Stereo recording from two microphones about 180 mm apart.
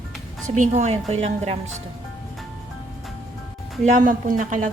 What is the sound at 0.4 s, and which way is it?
A woman's voice, 45° right (ahead or behind).